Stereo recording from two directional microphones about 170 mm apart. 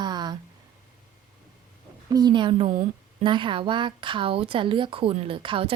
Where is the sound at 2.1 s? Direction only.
25° right (ahead or behind).